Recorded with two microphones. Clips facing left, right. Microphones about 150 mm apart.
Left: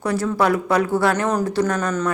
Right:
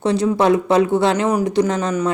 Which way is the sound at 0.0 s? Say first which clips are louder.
Right 4 dB; 25° right (ahead or behind).